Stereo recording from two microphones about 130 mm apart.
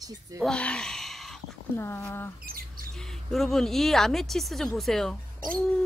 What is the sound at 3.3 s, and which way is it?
Speech, centre (ahead or behind).